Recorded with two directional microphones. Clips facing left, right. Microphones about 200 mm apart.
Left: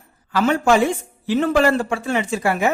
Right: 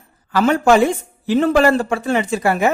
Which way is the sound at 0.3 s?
40° right (ahead or behind).